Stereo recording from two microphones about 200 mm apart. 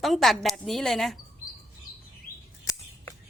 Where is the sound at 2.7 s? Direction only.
15° left (ahead or behind).